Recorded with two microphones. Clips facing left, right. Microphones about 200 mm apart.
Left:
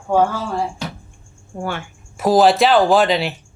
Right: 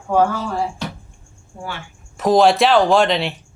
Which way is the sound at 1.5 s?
55° left (ahead or behind).